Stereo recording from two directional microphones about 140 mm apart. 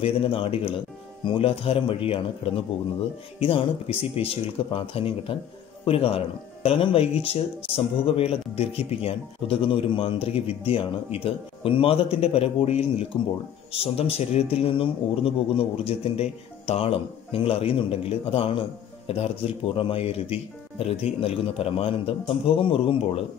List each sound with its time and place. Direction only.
0.0 s speech: 40° left (ahead or behind)